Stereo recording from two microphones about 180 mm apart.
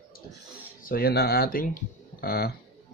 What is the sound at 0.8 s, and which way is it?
Speech, 55° left (ahead or behind).